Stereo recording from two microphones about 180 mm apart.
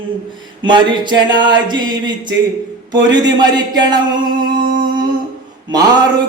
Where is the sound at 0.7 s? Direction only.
25° right (ahead or behind).